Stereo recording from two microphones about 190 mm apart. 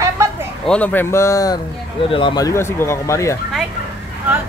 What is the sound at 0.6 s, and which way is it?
Speech, 10° left (ahead or behind).